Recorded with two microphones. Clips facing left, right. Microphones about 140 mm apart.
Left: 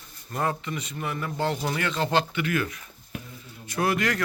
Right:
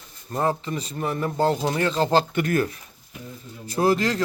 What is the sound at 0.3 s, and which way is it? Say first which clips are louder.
A man's voice: right 4 dB; 30° right (ahead or behind).